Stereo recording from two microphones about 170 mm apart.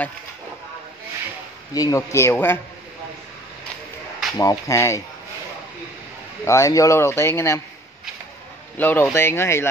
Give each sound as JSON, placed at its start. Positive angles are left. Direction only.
{"t": 1.7, "sound": "speech", "side_deg": 20}
{"t": 4.4, "sound": "speech", "side_deg": 20}
{"t": 6.4, "sound": "speech", "side_deg": 20}
{"t": 8.7, "sound": "speech", "side_deg": 10}